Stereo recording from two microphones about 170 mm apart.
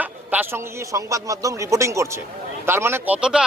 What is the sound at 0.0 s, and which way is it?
A man's voice, 10° right (ahead or behind).